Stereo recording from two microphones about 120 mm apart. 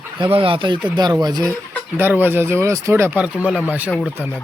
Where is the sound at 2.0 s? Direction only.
15° right (ahead or behind).